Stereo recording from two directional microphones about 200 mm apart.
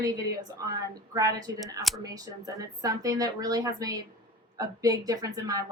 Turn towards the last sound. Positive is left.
turn(degrees=-20)  # may be behind; listen again after turning